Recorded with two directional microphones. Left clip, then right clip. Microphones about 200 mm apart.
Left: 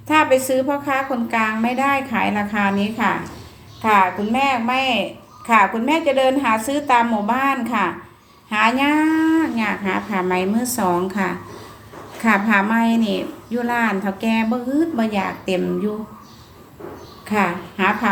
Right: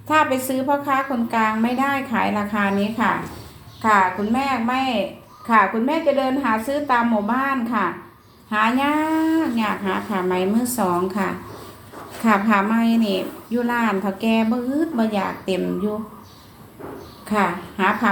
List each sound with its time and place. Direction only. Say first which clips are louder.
0.1 s a woman's voice: left 3 dB; 20° left (ahead or behind)
17.2 s a woman's voice: left 1 dB; 20° left (ahead or behind)